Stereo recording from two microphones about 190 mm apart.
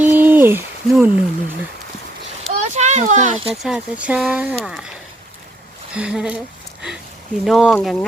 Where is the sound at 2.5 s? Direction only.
40° right (ahead or behind).